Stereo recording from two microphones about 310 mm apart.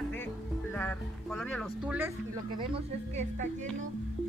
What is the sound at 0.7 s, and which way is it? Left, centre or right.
Music, centre.